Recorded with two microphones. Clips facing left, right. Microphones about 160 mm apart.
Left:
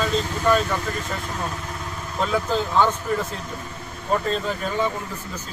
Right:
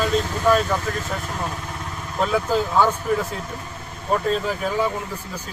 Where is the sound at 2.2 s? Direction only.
5° right (ahead or behind).